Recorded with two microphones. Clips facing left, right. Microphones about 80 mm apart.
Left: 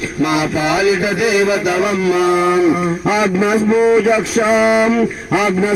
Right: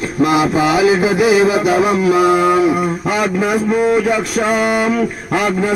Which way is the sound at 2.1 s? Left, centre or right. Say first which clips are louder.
Even; centre.